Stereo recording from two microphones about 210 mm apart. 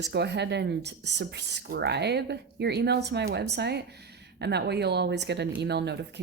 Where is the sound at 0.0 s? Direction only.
55° right (ahead or behind).